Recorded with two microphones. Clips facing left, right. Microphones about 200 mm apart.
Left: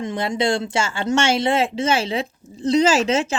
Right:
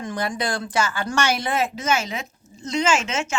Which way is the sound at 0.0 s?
25° left (ahead or behind).